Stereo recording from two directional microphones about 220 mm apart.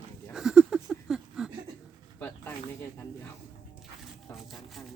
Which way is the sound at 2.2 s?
10° left (ahead or behind).